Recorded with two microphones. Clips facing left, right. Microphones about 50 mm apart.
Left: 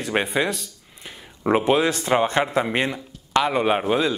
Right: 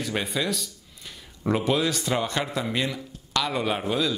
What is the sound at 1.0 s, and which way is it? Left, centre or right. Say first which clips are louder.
Speech: left 5 dB; left.